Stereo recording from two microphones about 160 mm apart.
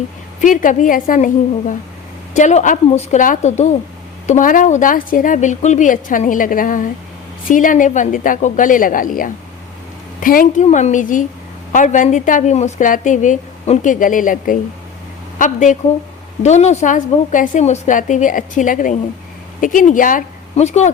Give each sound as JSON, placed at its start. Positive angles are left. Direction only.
{"t": 0.4, "sound": "a woman's voice", "side_deg": 55}
{"t": 4.3, "sound": "a woman's voice", "side_deg": 55}